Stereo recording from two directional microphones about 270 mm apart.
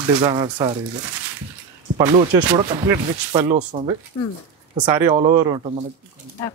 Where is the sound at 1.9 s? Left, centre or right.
Centre.